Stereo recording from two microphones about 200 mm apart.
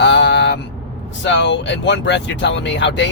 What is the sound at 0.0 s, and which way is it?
Vehicle, 65° left (ahead or behind).